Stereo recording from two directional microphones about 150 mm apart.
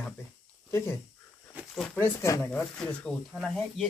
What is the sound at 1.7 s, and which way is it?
Speech, centre (ahead or behind).